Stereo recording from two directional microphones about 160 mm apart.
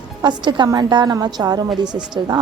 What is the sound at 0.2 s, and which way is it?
A woman's voice, 25° right (ahead or behind).